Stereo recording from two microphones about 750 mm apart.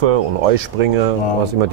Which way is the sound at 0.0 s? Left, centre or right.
Right.